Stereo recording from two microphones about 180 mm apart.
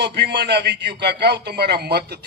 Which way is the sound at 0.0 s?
65° right (ahead or behind).